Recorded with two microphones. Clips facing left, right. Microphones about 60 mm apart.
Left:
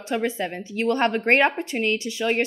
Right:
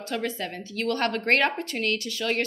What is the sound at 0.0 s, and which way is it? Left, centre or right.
Speech, centre.